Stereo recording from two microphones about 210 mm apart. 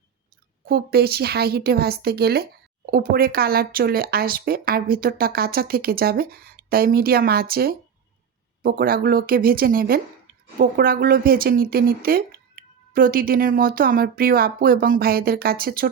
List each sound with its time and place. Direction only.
0.6 s a woman's voice: 45° right (ahead or behind)